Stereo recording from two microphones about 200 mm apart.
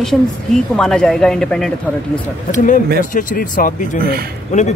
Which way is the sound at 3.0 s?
40° left (ahead or behind).